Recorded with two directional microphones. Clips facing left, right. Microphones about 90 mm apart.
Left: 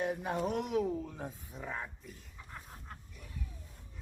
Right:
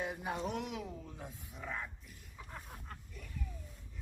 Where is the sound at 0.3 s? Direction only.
45° left (ahead or behind).